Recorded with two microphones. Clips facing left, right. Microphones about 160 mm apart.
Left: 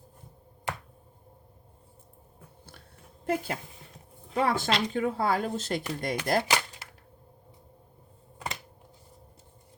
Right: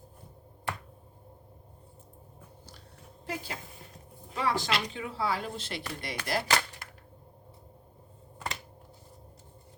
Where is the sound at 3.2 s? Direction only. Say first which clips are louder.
Left 8 dB; 55° left (ahead or behind).